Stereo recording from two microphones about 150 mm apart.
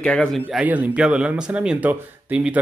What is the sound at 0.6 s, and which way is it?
Speech, 10° right (ahead or behind).